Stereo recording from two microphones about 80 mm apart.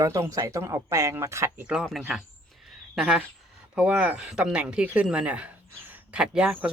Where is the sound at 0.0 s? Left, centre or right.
Right.